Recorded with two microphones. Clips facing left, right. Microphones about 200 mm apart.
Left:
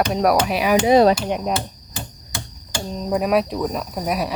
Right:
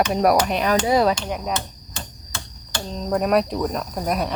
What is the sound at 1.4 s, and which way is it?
Hammer, 10° left (ahead or behind).